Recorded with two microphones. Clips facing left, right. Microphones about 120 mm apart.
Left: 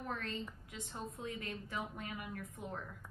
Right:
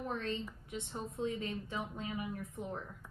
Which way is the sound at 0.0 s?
25° right (ahead or behind).